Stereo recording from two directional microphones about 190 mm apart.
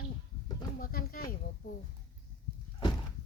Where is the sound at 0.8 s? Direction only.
50° left (ahead or behind).